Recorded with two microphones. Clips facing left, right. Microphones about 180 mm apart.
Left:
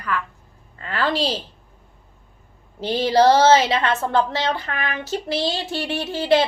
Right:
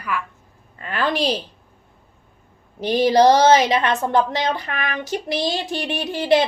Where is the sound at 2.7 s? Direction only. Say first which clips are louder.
Right 2 dB; 15° right (ahead or behind).